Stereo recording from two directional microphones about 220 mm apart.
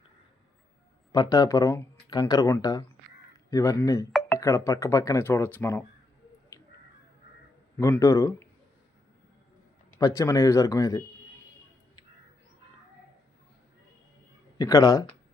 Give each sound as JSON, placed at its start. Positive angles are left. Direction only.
{"t": 1.1, "sound": "speech", "side_deg": 15}
{"t": 7.8, "sound": "speech", "side_deg": 15}
{"t": 10.0, "sound": "speech", "side_deg": 15}
{"t": 14.6, "sound": "speech", "side_deg": 15}